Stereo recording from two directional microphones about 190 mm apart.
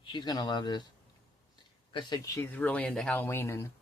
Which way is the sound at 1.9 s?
25° left (ahead or behind).